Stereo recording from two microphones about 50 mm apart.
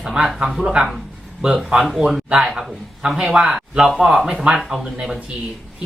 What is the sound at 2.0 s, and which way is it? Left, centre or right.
Speech, centre.